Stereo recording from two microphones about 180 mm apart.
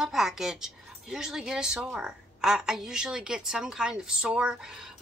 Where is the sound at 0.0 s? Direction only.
Centre (ahead or behind).